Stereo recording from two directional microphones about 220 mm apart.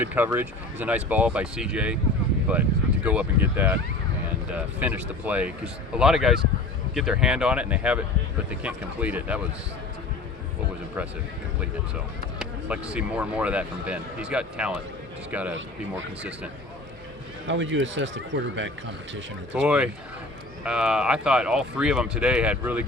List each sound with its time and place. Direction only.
0.0 s speech: 10° right (ahead or behind)
12.4 s speech: 5° right (ahead or behind)
17.5 s speech: 55° right (ahead or behind)
19.5 s speech: 5° right (ahead or behind)